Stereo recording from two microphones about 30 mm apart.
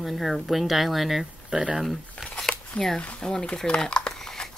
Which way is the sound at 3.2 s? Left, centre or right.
Left.